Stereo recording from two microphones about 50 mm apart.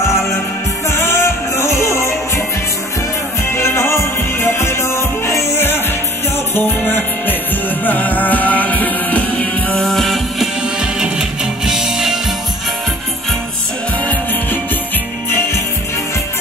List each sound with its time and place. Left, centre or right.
0.8 s music: left
3.5 s music: left
6.5 s music: left
9.8 s music: centre
10.8 s music: centre
15.2 s music: left